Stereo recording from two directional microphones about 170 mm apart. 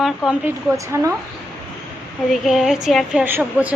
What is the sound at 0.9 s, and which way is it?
Speech, 15° right (ahead or behind).